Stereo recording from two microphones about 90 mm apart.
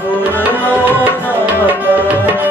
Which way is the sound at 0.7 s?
20° right (ahead or behind).